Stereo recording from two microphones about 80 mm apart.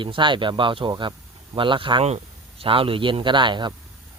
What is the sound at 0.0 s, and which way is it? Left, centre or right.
A man's voice, right.